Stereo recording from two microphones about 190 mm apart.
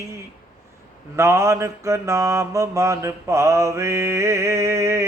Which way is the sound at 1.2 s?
15° right (ahead or behind).